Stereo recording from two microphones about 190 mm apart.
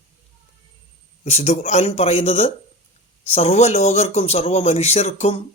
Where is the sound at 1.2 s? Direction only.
35° left (ahead or behind).